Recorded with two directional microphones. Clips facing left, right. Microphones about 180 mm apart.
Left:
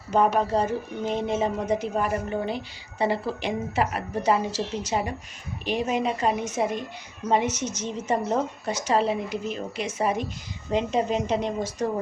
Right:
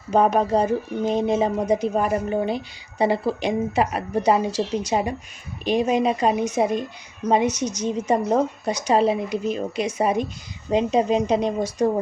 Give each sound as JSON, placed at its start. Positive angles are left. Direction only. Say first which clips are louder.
{"t": 0.1, "sound": "a woman's voice", "louder": "right 3 dB", "side_deg": -15}